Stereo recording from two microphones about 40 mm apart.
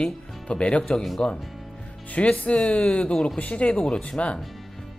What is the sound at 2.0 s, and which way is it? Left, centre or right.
Speech, left.